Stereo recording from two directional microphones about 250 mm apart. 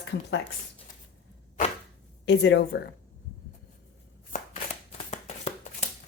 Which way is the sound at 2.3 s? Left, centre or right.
Left.